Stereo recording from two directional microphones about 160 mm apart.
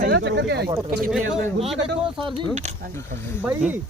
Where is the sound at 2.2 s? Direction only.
35° right (ahead or behind).